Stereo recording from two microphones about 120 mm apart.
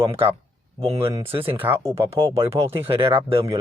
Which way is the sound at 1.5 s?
20° right (ahead or behind).